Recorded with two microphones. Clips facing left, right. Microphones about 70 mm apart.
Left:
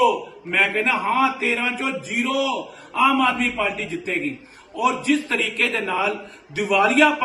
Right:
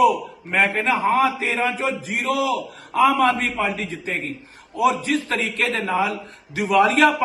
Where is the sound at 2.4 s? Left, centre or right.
Right.